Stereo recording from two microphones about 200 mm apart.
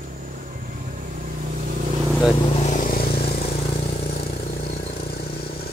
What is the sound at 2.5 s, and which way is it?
Vehicle, 35° left (ahead or behind).